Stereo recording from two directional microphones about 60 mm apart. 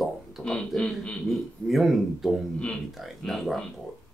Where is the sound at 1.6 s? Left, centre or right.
Centre.